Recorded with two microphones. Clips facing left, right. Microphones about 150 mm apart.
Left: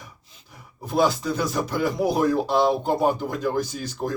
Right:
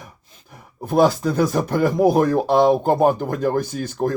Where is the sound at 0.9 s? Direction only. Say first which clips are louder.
Right 5 dB; 50° right (ahead or behind).